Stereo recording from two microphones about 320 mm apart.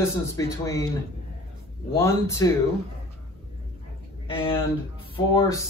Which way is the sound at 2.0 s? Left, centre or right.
Centre.